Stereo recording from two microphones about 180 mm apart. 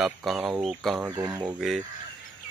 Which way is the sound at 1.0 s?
15° right (ahead or behind).